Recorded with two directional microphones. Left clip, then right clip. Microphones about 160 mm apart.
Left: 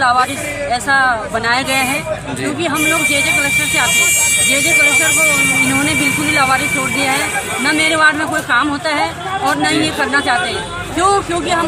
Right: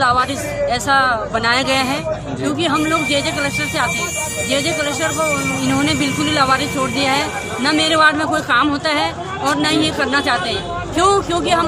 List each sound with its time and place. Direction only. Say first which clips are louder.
0.0 s speech: left 2 dB; 30° right (ahead or behind)